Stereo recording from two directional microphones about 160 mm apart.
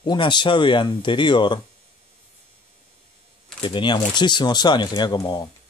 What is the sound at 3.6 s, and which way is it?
Speech, 30° left (ahead or behind).